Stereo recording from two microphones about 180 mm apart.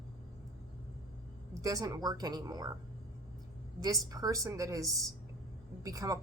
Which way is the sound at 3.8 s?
20° right (ahead or behind).